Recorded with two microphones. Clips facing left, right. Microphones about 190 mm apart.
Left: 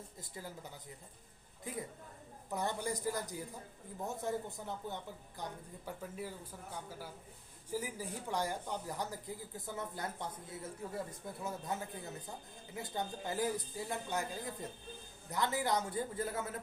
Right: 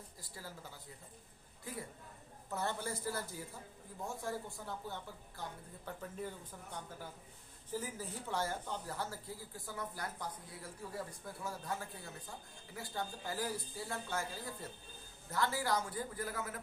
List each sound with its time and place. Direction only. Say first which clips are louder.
0.2 s speech: left 3 dB; 20° left (ahead or behind)